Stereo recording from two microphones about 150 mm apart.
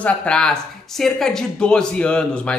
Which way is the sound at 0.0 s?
5° left (ahead or behind).